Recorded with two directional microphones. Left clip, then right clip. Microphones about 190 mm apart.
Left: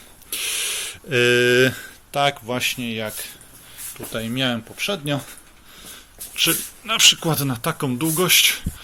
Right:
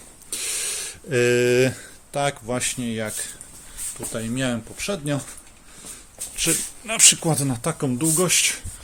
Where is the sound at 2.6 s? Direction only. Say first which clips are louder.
Left 3 dB; 15° right (ahead or behind).